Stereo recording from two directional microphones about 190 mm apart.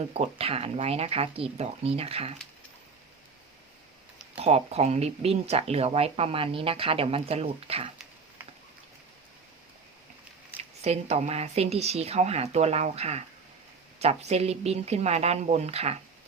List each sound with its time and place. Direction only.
0.1 s speech: 30° right (ahead or behind)
4.4 s speech: 30° right (ahead or behind)
10.6 s speech: 35° right (ahead or behind)